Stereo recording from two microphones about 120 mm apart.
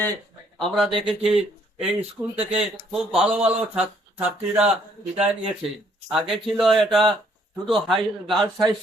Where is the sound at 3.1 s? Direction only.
10° right (ahead or behind).